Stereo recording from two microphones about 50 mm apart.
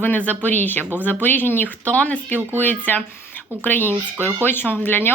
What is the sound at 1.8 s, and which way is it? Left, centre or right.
Speech, left.